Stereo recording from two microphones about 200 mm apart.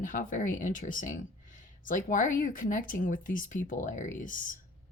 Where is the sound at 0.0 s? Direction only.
40° left (ahead or behind).